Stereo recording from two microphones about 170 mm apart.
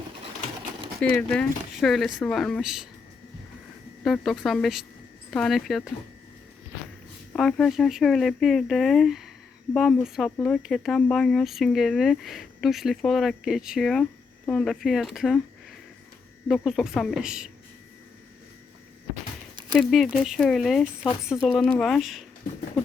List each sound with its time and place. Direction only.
1.0 s speech: 10° left (ahead or behind)
4.0 s speech: centre (ahead or behind)
7.3 s speech: centre (ahead or behind)
16.5 s speech: centre (ahead or behind)
19.7 s speech: centre (ahead or behind)